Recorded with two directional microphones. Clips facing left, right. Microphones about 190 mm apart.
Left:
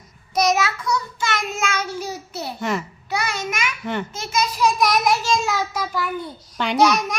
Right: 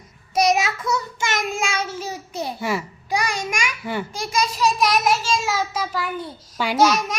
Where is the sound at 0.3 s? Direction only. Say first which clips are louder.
Right 1 dB; 10° right (ahead or behind).